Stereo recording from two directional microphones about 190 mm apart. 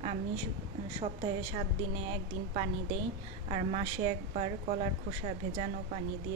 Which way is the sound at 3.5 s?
35° right (ahead or behind).